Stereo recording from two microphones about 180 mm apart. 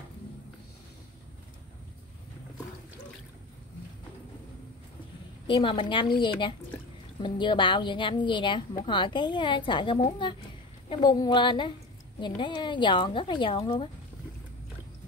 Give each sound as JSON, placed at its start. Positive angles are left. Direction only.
{"t": 5.5, "sound": "a woman's voice", "side_deg": 25}